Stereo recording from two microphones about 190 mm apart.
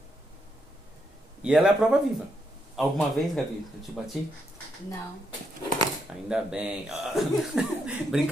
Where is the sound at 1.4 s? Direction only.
5° right (ahead or behind).